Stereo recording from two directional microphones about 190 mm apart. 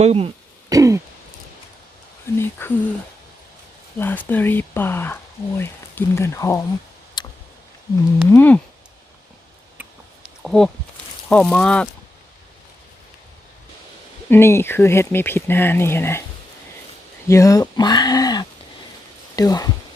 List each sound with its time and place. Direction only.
0.0 s speech: 30° right (ahead or behind)
0.7 s throat clearing: 15° right (ahead or behind)
2.4 s speech: 10° left (ahead or behind)
3.9 s speech: 10° left (ahead or behind)
7.2 s tick: 25° left (ahead or behind)
8.3 s speech: 10° left (ahead or behind)
10.2 s a sound: centre (ahead or behind)
11.3 s speech: 5° left (ahead or behind)
14.3 s speech: 15° left (ahead or behind)
17.2 s speech: 15° left (ahead or behind)